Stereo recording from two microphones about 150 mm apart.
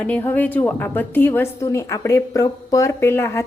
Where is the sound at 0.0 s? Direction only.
10° left (ahead or behind).